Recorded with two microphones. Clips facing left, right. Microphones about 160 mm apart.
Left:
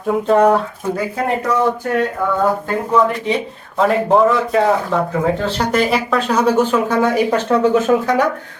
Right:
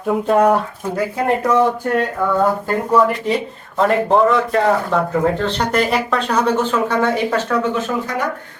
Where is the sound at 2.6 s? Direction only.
Centre (ahead or behind); by 7.6 s 20° left (ahead or behind).